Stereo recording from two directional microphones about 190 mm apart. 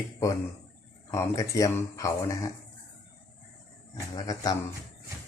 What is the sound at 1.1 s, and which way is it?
Speech, 15° left (ahead or behind).